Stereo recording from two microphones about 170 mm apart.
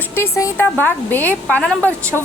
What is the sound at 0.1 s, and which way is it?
A woman's voice, 15° left (ahead or behind).